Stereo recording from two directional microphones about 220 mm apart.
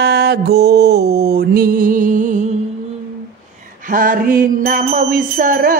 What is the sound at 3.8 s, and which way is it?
Bicycle bell, 40° right (ahead or behind).